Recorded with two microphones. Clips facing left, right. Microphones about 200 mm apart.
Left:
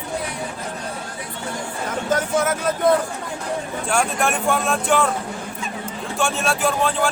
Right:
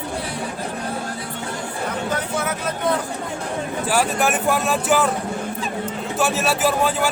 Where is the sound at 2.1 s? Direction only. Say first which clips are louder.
Left 8 dB; 45° left (ahead or behind).